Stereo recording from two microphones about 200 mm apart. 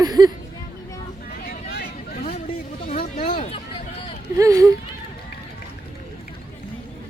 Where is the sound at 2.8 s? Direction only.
45° left (ahead or behind).